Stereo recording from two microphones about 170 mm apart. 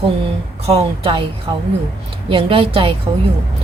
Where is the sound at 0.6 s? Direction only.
35° right (ahead or behind).